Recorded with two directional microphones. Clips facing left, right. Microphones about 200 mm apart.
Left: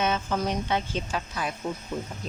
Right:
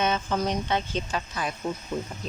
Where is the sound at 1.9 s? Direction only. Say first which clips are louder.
Right 3 dB; 10° right (ahead or behind).